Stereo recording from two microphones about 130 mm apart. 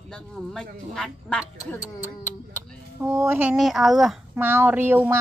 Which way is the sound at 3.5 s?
Centre (ahead or behind).